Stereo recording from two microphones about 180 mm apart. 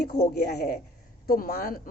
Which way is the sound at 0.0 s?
60° left (ahead or behind).